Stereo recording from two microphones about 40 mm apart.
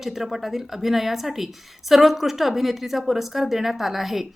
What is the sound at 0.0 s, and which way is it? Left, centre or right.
A woman's voice, centre.